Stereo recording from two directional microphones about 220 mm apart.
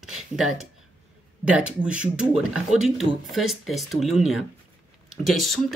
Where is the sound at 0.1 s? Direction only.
Centre (ahead or behind).